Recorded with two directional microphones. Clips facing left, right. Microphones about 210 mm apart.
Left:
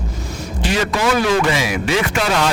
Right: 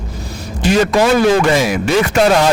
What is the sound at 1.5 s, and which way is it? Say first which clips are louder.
Speech: right 5 dB; 45° right (ahead or behind).